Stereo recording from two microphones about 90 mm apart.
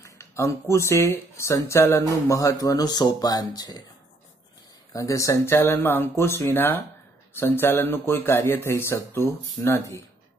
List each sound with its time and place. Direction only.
0.0 s speech: 35° left (ahead or behind)
4.9 s speech: 35° left (ahead or behind)